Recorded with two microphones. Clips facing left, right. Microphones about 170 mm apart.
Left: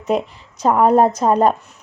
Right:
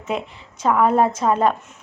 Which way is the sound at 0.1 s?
40° left (ahead or behind).